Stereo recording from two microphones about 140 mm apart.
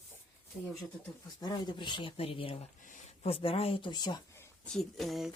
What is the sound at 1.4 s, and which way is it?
Speech, 30° left (ahead or behind).